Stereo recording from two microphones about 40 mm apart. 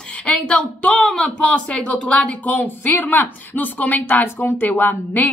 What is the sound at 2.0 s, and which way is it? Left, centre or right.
Speech, centre.